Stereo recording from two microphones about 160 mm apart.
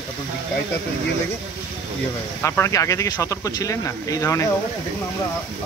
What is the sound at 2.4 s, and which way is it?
Speech, 15° left (ahead or behind).